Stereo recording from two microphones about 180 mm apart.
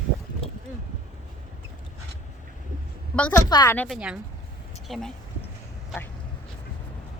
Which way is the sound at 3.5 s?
20° left (ahead or behind).